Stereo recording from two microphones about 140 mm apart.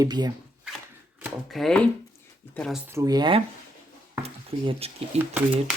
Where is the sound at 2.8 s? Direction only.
20° right (ahead or behind).